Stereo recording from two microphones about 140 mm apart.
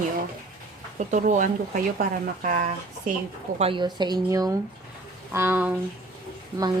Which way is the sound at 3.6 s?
35° right (ahead or behind).